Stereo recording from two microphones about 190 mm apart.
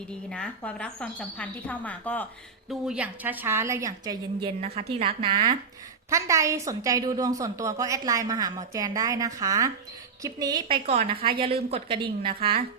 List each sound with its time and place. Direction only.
0.1 s a woman's voice: 5° left (ahead or behind)
2.6 s a woman's voice: 5° right (ahead or behind); by 10.8 s 20° right (ahead or behind)
10.8 s a woman's voice: 35° right (ahead or behind)